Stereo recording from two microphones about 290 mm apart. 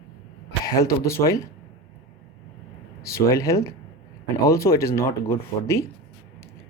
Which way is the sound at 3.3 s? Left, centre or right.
Centre.